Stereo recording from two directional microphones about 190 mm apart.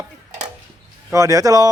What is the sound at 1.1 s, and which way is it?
Speech, 15° right (ahead or behind).